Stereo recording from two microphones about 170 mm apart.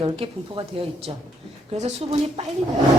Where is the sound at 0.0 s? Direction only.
30° right (ahead or behind).